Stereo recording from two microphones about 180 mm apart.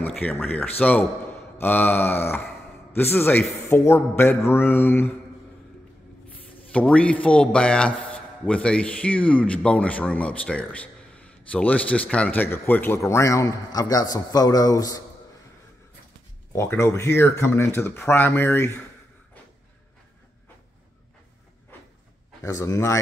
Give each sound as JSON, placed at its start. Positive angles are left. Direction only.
{"t": 0.0, "sound": "a man's voice", "side_deg": 10}
{"t": 6.7, "sound": "a man's voice", "side_deg": 5}
{"t": 16.5, "sound": "a man's voice", "side_deg": 15}
{"t": 22.4, "sound": "a man's voice", "side_deg": 15}